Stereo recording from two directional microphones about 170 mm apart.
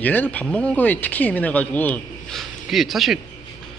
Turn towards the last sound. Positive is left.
turn(degrees=0)  # may be behind; listen again after turning